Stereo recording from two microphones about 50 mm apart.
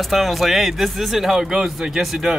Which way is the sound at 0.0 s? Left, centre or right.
Centre.